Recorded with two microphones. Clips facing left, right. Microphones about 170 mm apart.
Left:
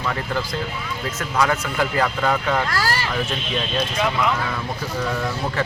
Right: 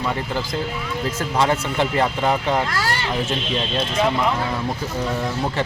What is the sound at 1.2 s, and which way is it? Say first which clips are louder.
Speech: right 1 dB; 30° right (ahead or behind).